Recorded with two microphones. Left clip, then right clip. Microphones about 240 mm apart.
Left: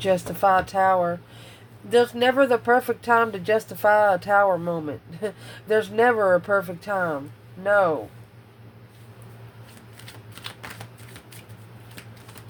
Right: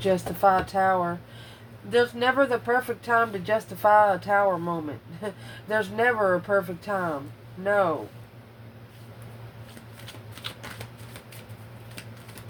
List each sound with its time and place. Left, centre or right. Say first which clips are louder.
0.0 s speech: left 1 dB; left